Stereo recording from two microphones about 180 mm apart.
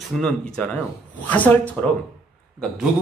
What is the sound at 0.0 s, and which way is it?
Speech, centre (ahead or behind).